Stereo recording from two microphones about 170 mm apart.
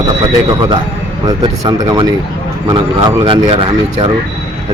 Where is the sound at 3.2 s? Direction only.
30° right (ahead or behind).